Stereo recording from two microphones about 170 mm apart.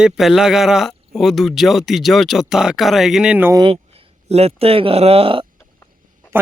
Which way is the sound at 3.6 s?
35° right (ahead or behind).